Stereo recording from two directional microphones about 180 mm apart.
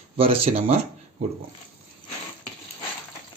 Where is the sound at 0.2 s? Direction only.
30° right (ahead or behind).